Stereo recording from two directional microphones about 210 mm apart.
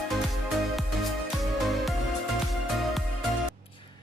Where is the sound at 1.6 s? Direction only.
Centre (ahead or behind).